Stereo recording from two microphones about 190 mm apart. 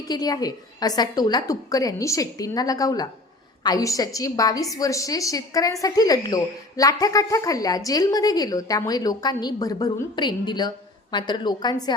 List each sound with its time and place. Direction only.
0.1 s a woman's voice: 20° left (ahead or behind)